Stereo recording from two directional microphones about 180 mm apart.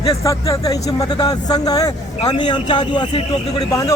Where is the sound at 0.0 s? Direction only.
20° left (ahead or behind).